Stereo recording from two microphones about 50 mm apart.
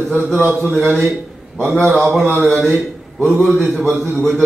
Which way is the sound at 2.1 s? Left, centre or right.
Right.